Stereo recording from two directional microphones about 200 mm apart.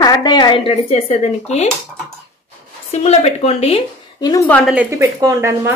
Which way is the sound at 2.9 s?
30° left (ahead or behind).